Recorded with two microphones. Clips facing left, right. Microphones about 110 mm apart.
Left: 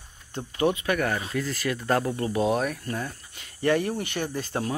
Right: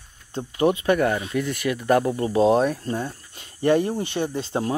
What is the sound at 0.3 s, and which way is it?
Speech, 25° right (ahead or behind).